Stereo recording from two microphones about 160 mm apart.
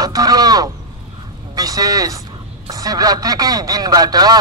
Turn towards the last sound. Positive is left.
turn(degrees=-25)  # may be behind; listen again after turning